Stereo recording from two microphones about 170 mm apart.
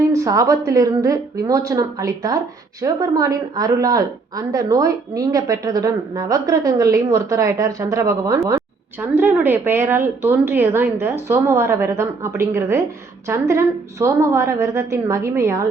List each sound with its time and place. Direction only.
0.1 s a woman's voice: 20° right (ahead or behind)